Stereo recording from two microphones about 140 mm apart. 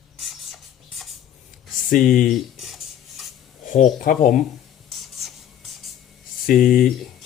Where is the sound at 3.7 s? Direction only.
75° left (ahead or behind).